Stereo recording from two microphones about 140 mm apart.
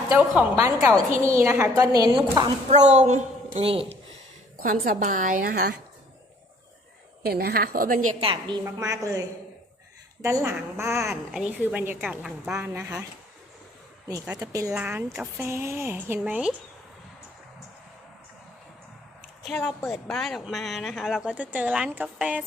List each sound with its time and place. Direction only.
0.1 s speech: 15° right (ahead or behind)
0.8 s a woman's voice: 25° right (ahead or behind)
2.0 s a woman's voice: 30° right (ahead or behind)
2.6 s a woman's voice: 50° right (ahead or behind)
3.6 s speech: 40° right (ahead or behind)
4.9 s a woman's voice: 75° right (ahead or behind)
7.2 s a woman's voice: 90° right
8.2 s a woman's voice: 35° right (ahead or behind)
8.6 s a woman's voice: 25° right (ahead or behind)
11.1 s speech: 5° right (ahead or behind)
12.0 s speech: 5° right (ahead or behind)
14.3 s a woman's voice: 25° right (ahead or behind)
14.8 s speech: 10° right (ahead or behind)
19.4 s a woman's voice: 5° left (ahead or behind)